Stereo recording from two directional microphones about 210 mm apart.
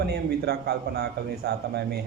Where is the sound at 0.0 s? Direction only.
50° right (ahead or behind).